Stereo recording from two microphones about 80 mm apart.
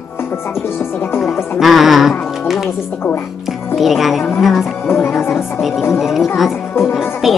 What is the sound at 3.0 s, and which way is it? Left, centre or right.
Music, left.